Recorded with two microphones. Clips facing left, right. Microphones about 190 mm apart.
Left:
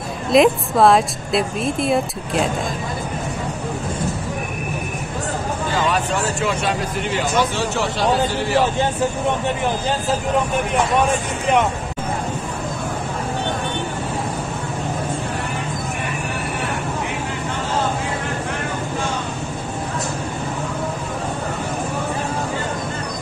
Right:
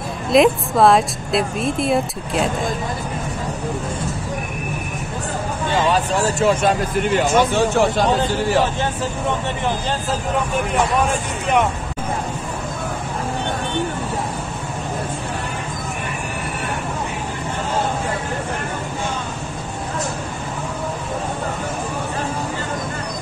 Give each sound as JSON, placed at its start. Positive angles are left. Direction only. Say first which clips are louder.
{"t": 0.3, "sound": "a woman's voice", "louder": "even", "side_deg": 0}
{"t": 5.7, "sound": "speech", "louder": "right 3 dB", "side_deg": -30}
{"t": 6.5, "sound": "speech", "louder": "right 4 dB", "side_deg": -45}